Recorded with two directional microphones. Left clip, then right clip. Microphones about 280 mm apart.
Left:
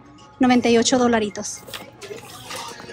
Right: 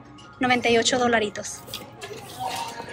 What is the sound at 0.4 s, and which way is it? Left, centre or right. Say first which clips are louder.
Speech: left 3 dB; centre.